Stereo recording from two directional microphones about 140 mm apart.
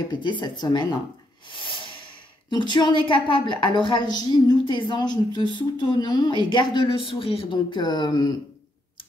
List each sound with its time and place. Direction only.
0.1 s a woman's voice: 35° left (ahead or behind)
1.5 s snort: 35° left (ahead or behind)
2.5 s a woman's voice: 30° left (ahead or behind)